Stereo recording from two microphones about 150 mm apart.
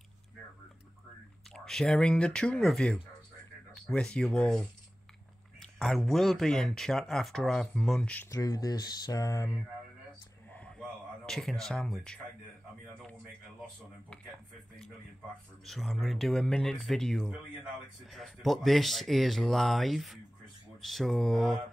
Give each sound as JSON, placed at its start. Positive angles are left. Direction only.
{"t": 1.5, "sound": "speech", "side_deg": 5}
{"t": 8.3, "sound": "speech", "side_deg": 20}
{"t": 10.5, "sound": "a sound", "side_deg": 5}
{"t": 15.6, "sound": "speech", "side_deg": 0}